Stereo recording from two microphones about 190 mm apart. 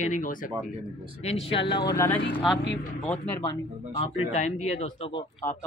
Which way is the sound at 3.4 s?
25° left (ahead or behind).